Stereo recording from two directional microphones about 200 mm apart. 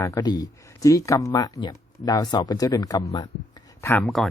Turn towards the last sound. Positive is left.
turn(degrees=0)  # may be behind; listen again after turning